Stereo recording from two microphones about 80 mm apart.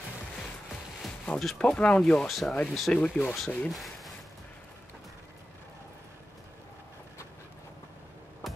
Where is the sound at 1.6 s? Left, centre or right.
Centre.